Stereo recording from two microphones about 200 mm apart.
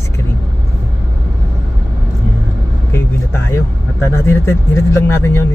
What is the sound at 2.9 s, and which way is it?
Speech, 10° left (ahead or behind).